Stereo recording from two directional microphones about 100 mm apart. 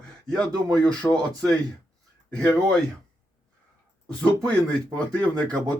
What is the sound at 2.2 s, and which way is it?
Speech, 10° left (ahead or behind).